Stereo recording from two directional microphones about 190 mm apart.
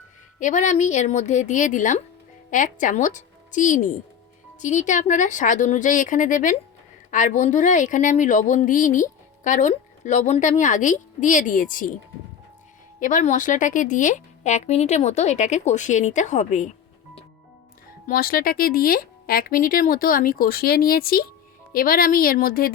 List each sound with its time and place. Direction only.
0.3 s a woman's voice: 40° left (ahead or behind)
13.0 s a woman's voice: 45° left (ahead or behind)
18.1 s speech: 50° left (ahead or behind)